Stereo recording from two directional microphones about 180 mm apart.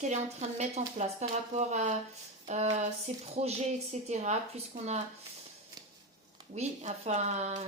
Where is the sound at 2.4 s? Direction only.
40° right (ahead or behind).